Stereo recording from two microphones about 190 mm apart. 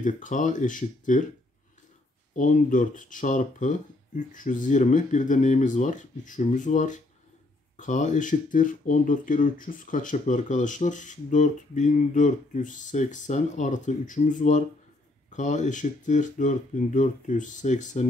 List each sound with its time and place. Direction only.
0.0 s speech: 40° left (ahead or behind)
2.3 s speech: 45° left (ahead or behind)